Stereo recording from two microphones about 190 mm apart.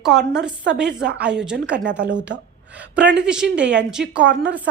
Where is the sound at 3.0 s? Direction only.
65° right (ahead or behind).